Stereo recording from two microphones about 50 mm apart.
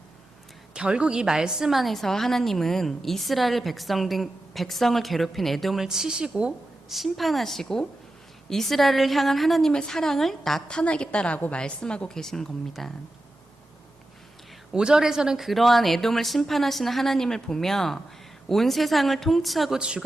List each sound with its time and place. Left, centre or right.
0.7 s a woman's voice: centre
5.8 s speech: centre
6.8 s a woman's voice: centre
9.7 s a woman's voice: centre
10.7 s a woman's voice: centre
14.7 s speech: centre
15.4 s a woman's voice: centre
19.8 s speech: centre